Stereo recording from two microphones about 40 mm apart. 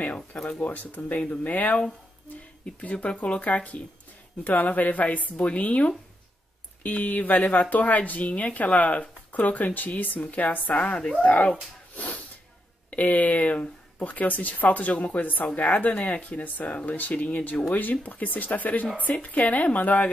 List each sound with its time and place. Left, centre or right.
0.0 s a sound: left
0.4 s speech: left
0.7 s a woman's voice: left
1.1 s speech: left
1.4 s a woman's voice: left
11.0 s speech: centre
12.9 s a woman's voice: left